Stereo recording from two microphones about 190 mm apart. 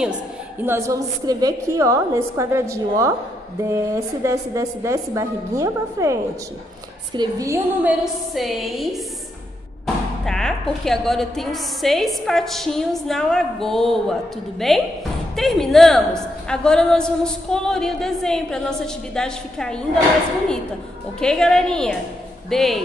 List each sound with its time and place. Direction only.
0.7 s a woman's voice: 15° right (ahead or behind)
7.2 s a woman's voice: 15° right (ahead or behind); by 9.0 s centre (ahead or behind)
10.2 s a woman's voice: 5° left (ahead or behind)
21.2 s a woman's voice: 5° left (ahead or behind)